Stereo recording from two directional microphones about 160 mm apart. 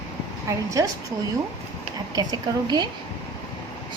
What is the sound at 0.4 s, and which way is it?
Speech, 20° right (ahead or behind).